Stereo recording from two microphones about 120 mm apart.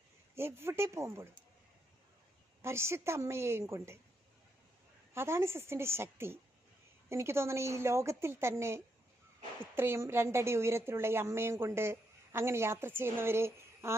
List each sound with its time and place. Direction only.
0.3 s a woman's voice: 20° right (ahead or behind)
2.6 s a woman's voice: 20° right (ahead or behind)
5.1 s a woman's voice: 20° right (ahead or behind)